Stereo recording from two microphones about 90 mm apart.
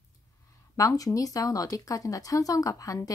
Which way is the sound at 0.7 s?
40° left (ahead or behind).